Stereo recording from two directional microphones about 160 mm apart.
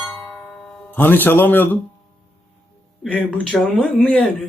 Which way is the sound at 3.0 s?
10° left (ahead or behind).